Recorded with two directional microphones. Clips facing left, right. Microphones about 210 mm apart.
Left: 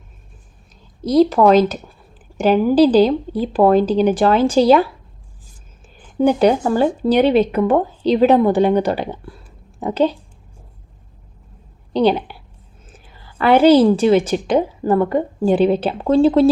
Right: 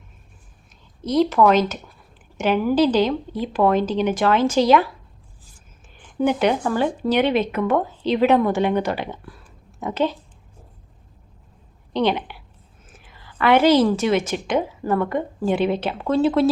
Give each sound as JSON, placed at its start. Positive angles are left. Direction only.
{"t": 1.0, "sound": "a woman's voice", "side_deg": 35}
{"t": 6.1, "sound": "a woman's voice", "side_deg": 35}
{"t": 11.9, "sound": "a woman's voice", "side_deg": 35}